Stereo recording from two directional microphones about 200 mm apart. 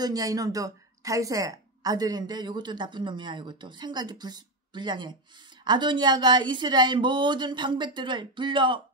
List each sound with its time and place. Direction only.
0.0 s a woman's voice: 20° right (ahead or behind)